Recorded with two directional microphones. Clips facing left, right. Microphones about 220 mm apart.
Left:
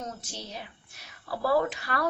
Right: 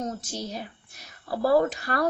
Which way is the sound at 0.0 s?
40° right (ahead or behind).